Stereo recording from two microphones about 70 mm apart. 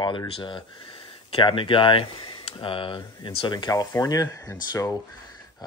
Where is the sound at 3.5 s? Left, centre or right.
Left.